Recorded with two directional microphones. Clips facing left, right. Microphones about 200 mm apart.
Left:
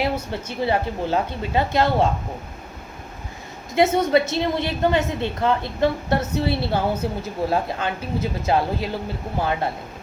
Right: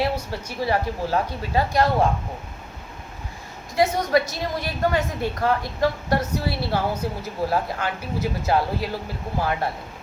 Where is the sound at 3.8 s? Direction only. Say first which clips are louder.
Left 3 dB; 25° left (ahead or behind).